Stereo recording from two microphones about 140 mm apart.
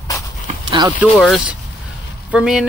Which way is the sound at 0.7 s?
35° right (ahead or behind).